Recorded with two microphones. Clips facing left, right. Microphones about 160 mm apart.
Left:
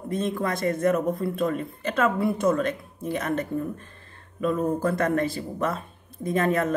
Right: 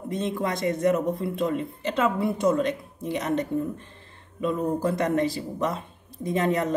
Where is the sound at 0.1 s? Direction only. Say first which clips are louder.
Left 1 dB; 20° right (ahead or behind).